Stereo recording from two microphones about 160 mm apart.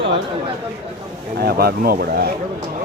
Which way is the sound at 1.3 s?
75° right (ahead or behind).